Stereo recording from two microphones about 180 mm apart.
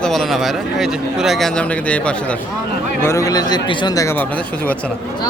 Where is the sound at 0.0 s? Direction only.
Centre (ahead or behind).